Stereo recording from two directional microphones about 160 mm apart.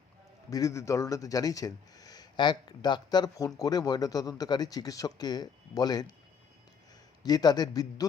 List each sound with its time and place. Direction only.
0.5 s speech: 20° left (ahead or behind)
7.2 s speech: 25° left (ahead or behind)